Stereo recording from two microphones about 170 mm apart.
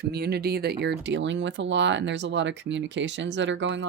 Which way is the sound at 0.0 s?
70° right (ahead or behind).